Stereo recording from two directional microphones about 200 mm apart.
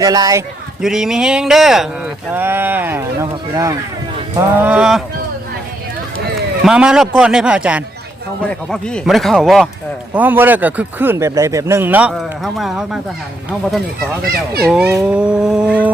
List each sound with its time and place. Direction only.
0.0 s a man's voice: 20° right (ahead or behind)
0.8 s a man's voice: centre (ahead or behind)
6.7 s a man's voice: 5° right (ahead or behind)